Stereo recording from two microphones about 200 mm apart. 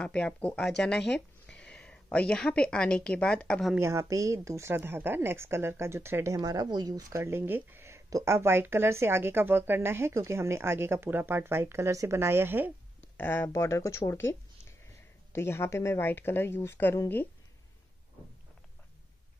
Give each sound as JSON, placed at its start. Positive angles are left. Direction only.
{"t": 0.0, "sound": "a woman's voice", "side_deg": 5}
{"t": 3.7, "sound": "a woman's voice", "side_deg": -15}
{"t": 13.0, "sound": "speech", "side_deg": 10}